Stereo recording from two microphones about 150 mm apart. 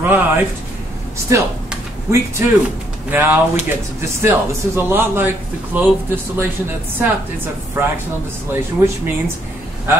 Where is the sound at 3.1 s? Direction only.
10° right (ahead or behind).